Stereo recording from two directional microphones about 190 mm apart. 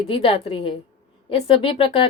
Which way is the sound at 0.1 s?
30° left (ahead or behind).